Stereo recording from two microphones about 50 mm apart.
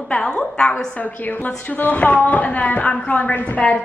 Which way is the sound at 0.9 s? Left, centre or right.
Left.